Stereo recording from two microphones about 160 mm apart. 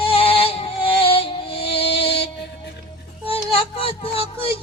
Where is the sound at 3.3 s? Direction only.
35° left (ahead or behind).